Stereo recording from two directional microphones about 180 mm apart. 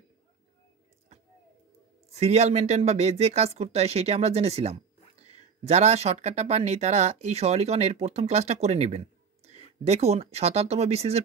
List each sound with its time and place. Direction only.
2.1 s speech: 35° right (ahead or behind)